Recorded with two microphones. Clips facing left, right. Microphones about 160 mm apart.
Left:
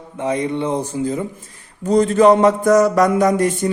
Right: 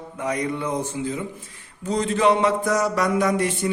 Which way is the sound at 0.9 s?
40° left (ahead or behind).